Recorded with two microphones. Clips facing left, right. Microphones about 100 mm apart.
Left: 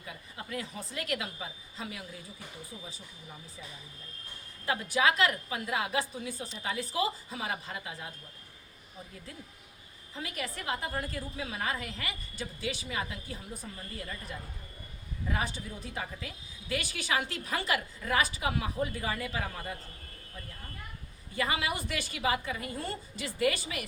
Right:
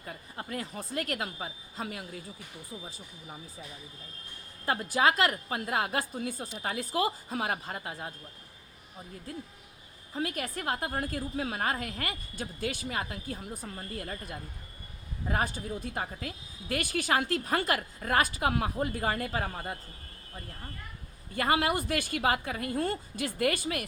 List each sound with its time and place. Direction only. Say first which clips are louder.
0.0 s a woman's voice: right 3 dB; 40° right (ahead or behind)
4.6 s a woman's voice: right 2 dB; 40° right (ahead or behind)
10.2 s a woman's voice: right 5 dB; 45° right (ahead or behind)
21.3 s a woman's voice: right 5 dB; 50° right (ahead or behind)